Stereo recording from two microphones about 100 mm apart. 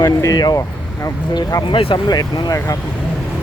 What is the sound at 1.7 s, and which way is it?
Speech, 60° left (ahead or behind).